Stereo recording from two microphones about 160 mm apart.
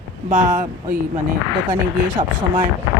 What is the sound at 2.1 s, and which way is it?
Speech, 30° right (ahead or behind).